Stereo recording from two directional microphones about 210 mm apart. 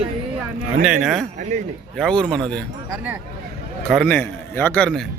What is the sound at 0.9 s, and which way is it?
Speech, centre (ahead or behind).